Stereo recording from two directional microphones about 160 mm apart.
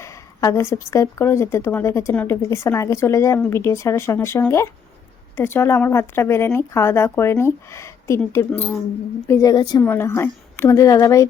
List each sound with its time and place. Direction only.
0.0 s a woman's voice: 20° left (ahead or behind)